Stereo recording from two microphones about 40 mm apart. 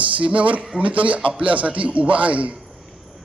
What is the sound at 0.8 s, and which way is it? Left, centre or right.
A man's voice, right.